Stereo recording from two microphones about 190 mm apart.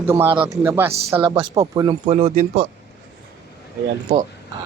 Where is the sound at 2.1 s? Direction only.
35° right (ahead or behind).